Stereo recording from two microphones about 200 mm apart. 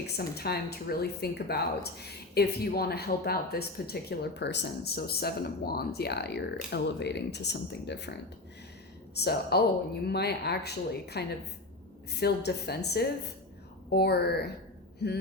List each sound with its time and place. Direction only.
0.2 s speech: 50° left (ahead or behind)
9.1 s a woman's voice: 55° left (ahead or behind)